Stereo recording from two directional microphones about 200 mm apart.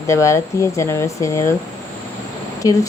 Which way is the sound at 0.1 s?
15° left (ahead or behind).